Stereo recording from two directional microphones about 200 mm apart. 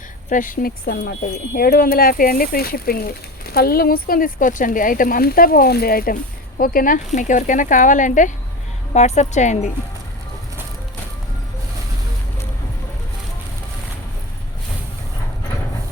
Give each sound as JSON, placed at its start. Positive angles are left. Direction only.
{"t": 0.3, "sound": "speech", "side_deg": 40}